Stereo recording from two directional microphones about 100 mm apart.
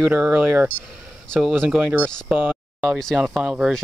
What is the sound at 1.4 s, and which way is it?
Speech, 5° right (ahead or behind).